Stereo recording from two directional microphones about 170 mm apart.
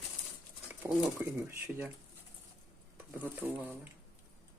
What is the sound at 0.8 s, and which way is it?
Speech, 10° right (ahead or behind).